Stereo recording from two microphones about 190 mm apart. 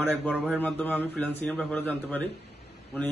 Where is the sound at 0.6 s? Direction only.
5° left (ahead or behind).